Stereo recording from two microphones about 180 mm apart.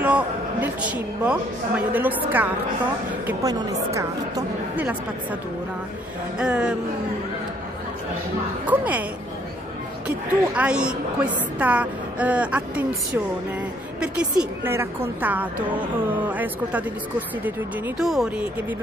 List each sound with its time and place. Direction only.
0.0 s a sound: 10° right (ahead or behind)
1.2 s a woman's voice: 5° right (ahead or behind)
6.3 s speech: 5° right (ahead or behind)
8.6 s a woman's voice: 10° right (ahead or behind)
10.0 s a woman's voice: 5° right (ahead or behind)